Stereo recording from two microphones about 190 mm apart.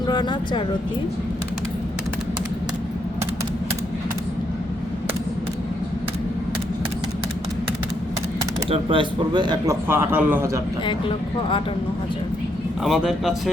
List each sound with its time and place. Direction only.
0.1 s speech: 25° left (ahead or behind)
8.7 s a man's voice: 25° right (ahead or behind)
9.9 s a man's voice: 10° right (ahead or behind)
12.8 s speech: centre (ahead or behind)